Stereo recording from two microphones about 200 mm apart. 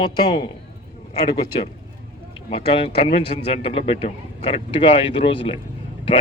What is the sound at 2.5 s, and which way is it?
A man's voice, 25° left (ahead or behind).